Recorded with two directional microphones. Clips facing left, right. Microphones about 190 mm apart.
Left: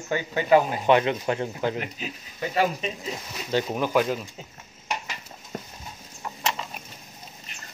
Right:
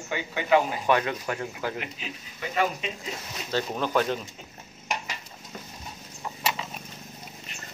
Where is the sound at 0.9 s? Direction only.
25° left (ahead or behind).